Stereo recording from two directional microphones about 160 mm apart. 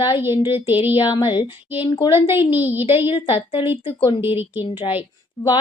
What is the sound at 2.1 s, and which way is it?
Speech, 15° right (ahead or behind).